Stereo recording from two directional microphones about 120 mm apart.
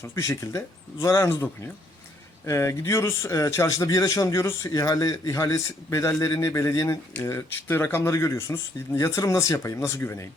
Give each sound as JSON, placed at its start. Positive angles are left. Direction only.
{"t": 0.0, "sound": "a man's voice", "side_deg": 25}